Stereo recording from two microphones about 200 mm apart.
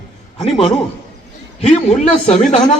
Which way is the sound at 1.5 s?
30° left (ahead or behind).